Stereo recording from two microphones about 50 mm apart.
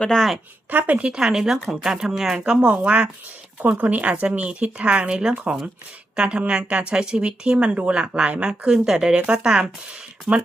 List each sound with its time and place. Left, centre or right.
0.7 s speech: right
1.1 s speech: centre
2.5 s speech: right